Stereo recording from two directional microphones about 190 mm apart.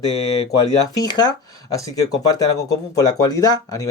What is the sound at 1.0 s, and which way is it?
Speech, 20° left (ahead or behind).